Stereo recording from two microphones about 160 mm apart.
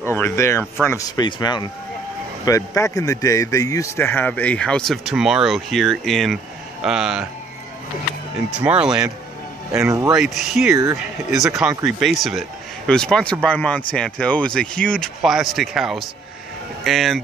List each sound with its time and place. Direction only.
0.0 s speech: 15° left (ahead or behind); by 7.2 s 5° right (ahead or behind)
8.5 s speech: 5° right (ahead or behind)
9.8 s speech: 20° right (ahead or behind)
10.1 s speech: centre (ahead or behind)